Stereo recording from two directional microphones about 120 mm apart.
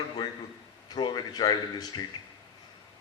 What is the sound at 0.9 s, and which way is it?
A man's voice, 35° left (ahead or behind).